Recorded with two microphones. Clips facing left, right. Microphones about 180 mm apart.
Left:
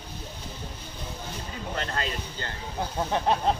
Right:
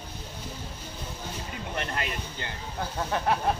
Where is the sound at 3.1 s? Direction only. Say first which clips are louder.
Left 1 dB; 20° left (ahead or behind).